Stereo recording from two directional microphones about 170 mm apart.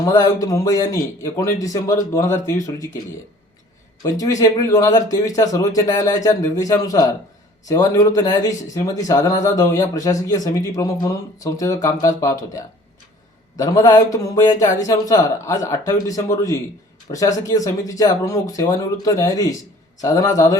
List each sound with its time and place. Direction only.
0.0 s speech: 20° left (ahead or behind)
4.0 s speech: 20° left (ahead or behind)
13.6 s speech: 20° left (ahead or behind)